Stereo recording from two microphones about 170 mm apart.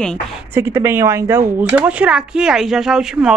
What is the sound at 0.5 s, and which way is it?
Speech, 15° right (ahead or behind).